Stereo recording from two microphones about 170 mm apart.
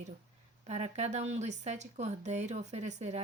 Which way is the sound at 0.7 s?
40° right (ahead or behind).